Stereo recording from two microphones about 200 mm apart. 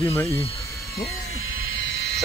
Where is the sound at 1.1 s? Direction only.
90° left; by 1.9 s 75° left (ahead or behind).